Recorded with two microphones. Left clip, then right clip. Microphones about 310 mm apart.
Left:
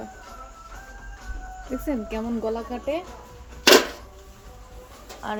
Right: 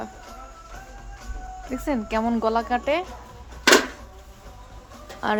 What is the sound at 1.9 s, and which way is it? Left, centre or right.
Speech, right.